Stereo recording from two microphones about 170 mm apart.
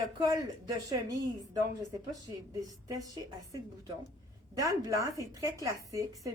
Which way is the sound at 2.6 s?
20° right (ahead or behind).